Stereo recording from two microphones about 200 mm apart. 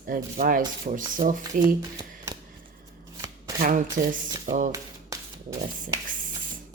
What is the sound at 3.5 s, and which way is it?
Speech, 45° right (ahead or behind).